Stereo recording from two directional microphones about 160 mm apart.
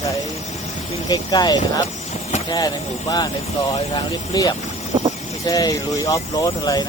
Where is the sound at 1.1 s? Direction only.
25° left (ahead or behind).